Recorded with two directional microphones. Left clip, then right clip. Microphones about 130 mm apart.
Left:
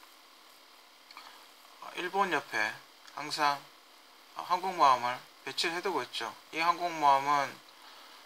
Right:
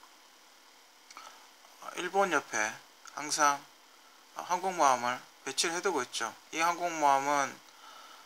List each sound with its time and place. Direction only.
1.9 s speech: 25° right (ahead or behind)